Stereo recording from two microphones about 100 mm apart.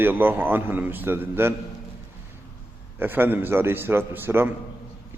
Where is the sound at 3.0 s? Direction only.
20° right (ahead or behind).